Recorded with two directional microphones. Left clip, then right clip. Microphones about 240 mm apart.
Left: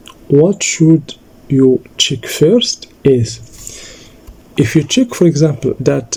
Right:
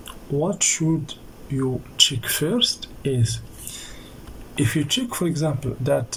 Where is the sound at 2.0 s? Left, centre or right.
Left.